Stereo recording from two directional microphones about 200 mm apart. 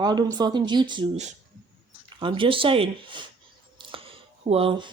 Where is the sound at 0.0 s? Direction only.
20° right (ahead or behind).